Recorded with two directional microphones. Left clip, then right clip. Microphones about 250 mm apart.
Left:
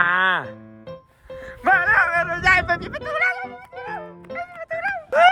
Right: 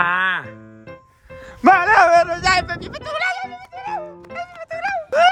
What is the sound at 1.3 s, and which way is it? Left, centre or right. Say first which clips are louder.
Music: left 2 dB; centre.